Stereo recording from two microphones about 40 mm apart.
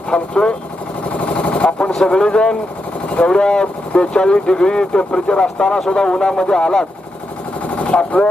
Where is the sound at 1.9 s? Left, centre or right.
Centre.